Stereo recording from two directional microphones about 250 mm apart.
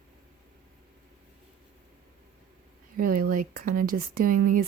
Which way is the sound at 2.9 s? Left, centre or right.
Right.